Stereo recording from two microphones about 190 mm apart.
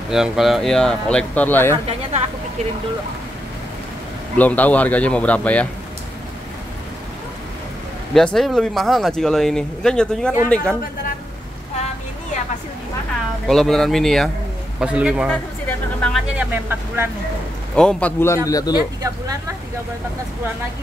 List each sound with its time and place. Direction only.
0.1 s speech: centre (ahead or behind)
4.4 s a man's voice: 10° left (ahead or behind)
8.1 s speech: centre (ahead or behind)
13.5 s speech: centre (ahead or behind)
15.6 s a sound: 5° left (ahead or behind)
16.6 s speech: 10° right (ahead or behind)
17.7 s a man's voice: 5° left (ahead or behind)
19.0 s speech: 15° right (ahead or behind)